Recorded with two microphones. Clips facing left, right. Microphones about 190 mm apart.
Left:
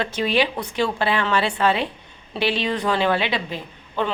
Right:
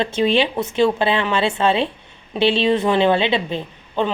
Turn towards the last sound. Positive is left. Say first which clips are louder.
# right 3 dB
turn(degrees=-20)  # may be behind; listen again after turning